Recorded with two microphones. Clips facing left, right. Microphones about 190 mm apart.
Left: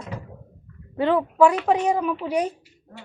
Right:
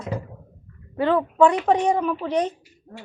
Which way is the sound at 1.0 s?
15° left (ahead or behind).